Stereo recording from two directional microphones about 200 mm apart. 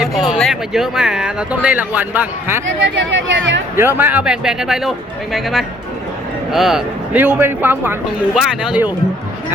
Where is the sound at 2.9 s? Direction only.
65° right (ahead or behind).